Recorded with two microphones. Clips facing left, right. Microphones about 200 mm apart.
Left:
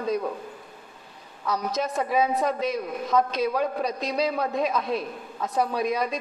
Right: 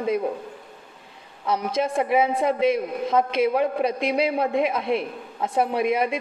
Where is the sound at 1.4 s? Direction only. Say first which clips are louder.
Right 3 dB; 25° right (ahead or behind).